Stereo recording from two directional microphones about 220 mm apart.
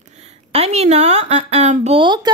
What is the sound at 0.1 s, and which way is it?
A woman's voice, 30° right (ahead or behind).